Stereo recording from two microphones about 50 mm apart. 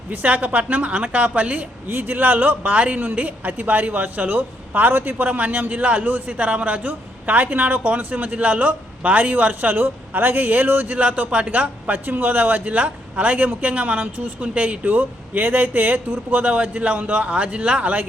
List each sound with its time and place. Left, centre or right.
0.1 s a woman's voice: right
1.9 s a man's voice: right